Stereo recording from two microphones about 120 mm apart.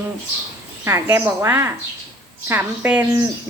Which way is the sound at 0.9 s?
20° right (ahead or behind).